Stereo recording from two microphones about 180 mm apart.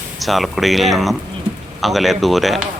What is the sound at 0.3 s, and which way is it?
Speech, centre (ahead or behind).